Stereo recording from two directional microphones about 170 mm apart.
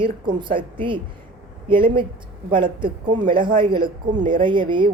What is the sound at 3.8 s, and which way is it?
Speech, 50° right (ahead or behind).